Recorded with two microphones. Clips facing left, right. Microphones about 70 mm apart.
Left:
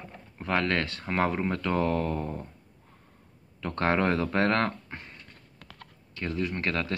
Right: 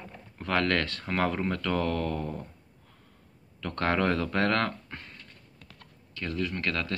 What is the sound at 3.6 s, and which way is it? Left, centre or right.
Speech, centre.